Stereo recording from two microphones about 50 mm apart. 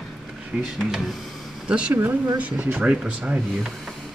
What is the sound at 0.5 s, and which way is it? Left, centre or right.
Speech, right.